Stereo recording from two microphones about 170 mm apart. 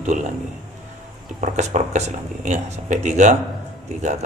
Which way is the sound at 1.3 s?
45° right (ahead or behind).